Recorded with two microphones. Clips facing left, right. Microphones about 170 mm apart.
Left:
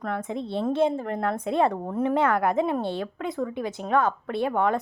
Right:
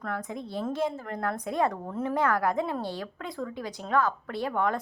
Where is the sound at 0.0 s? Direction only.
25° left (ahead or behind).